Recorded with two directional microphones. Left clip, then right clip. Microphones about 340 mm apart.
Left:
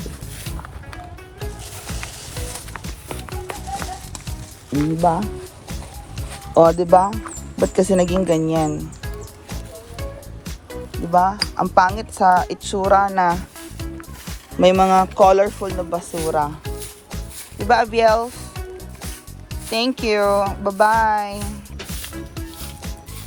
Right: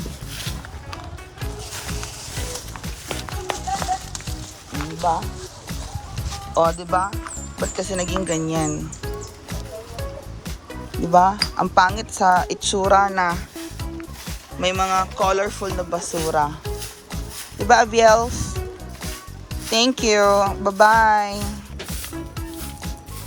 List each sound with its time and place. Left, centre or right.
4.9 s speech: left
6.6 s speech: centre
10.9 s speech: centre
19.7 s speech: centre
22.0 s music: centre